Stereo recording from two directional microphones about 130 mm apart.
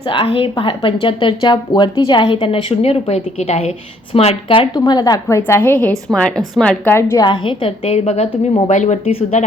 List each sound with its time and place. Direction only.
0.1 s a woman's voice: 45° left (ahead or behind)
4.9 s speech: 30° left (ahead or behind)
5.4 s a woman's voice: 15° left (ahead or behind)
6.9 s speech: 20° left (ahead or behind)
7.3 s a woman's voice: 40° left (ahead or behind); by 9.5 s 65° left (ahead or behind)